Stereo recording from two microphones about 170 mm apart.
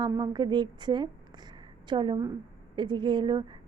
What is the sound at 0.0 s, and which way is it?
A woman's voice, 25° right (ahead or behind).